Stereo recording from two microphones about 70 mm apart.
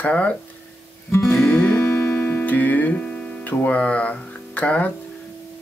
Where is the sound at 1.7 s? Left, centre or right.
Left; by 3.5 s centre.